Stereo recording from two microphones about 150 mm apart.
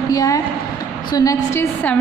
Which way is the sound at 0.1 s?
20° left (ahead or behind).